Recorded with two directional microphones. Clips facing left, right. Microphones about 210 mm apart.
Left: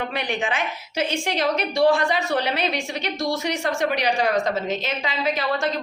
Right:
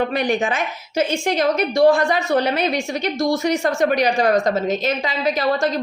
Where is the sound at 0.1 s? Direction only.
40° right (ahead or behind).